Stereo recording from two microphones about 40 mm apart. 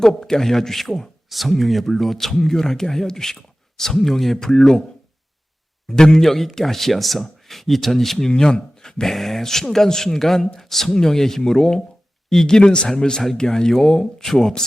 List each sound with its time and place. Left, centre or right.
0.0 s a man's voice: centre
5.9 s a man's voice: centre